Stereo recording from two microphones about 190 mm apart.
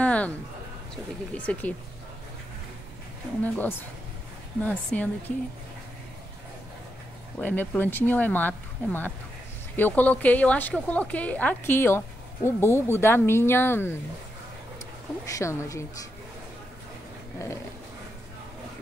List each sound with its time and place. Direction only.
0.0 s a sound: 5° left (ahead or behind)
1.3 s a woman's voice: 5° left (ahead or behind)
3.4 s a woman's voice: 10° left (ahead or behind)
7.3 s a woman's voice: 10° left (ahead or behind)
15.2 s a woman's voice: 15° left (ahead or behind)